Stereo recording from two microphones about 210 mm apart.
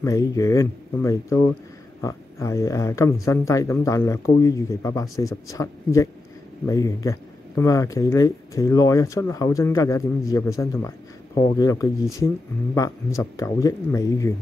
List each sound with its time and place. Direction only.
0.0 s speech: 15° left (ahead or behind)